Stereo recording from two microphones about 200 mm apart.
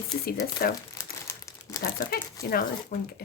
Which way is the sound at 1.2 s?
15° left (ahead or behind).